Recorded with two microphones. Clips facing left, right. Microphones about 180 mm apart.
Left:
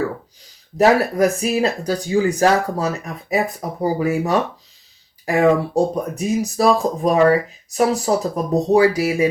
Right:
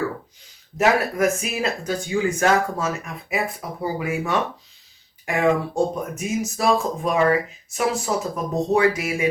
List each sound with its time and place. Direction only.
0.8 s speech: 35° left (ahead or behind)